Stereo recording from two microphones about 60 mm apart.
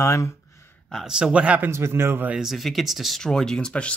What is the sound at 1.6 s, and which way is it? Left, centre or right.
Speech, right.